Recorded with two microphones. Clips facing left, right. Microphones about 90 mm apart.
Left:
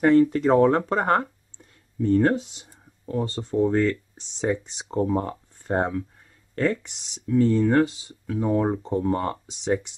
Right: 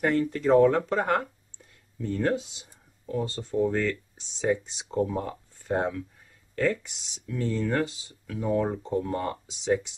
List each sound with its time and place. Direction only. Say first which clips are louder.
0.0 s speech: left 7 dB; 35° left (ahead or behind)
7.2 s speech: left 9 dB; 30° left (ahead or behind)